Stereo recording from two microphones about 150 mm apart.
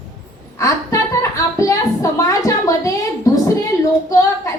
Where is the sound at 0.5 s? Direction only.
20° left (ahead or behind).